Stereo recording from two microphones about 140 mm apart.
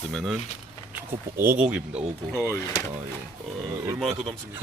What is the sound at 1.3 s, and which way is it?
Speech, 15° right (ahead or behind).